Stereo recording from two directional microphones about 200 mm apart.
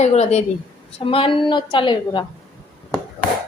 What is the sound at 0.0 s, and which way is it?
A woman's voice, 35° left (ahead or behind).